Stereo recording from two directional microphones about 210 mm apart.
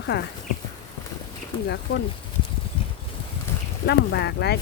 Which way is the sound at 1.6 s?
55° left (ahead or behind).